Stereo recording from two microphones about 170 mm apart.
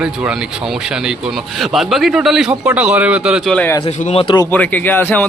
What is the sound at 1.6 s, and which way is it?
A man's voice, centre (ahead or behind).